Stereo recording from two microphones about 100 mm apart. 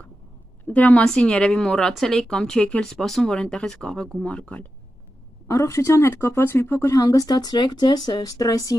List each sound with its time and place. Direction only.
0.7 s speech: 15° left (ahead or behind)
5.5 s speech: 30° left (ahead or behind)
6.9 s a woman's voice: 35° left (ahead or behind)